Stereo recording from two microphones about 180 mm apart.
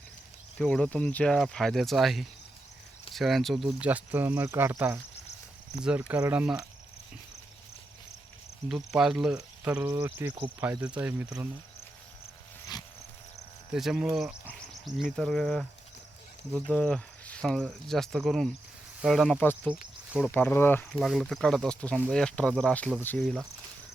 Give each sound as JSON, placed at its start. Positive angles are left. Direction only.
{"t": 0.6, "sound": "speech", "side_deg": 5}
{"t": 8.7, "sound": "speech", "side_deg": 0}
{"t": 12.7, "sound": "a sound", "side_deg": 20}
{"t": 13.7, "sound": "speech", "side_deg": 0}
{"t": 16.6, "sound": "speech", "side_deg": 5}
{"t": 23.2, "sound": "speech", "side_deg": 0}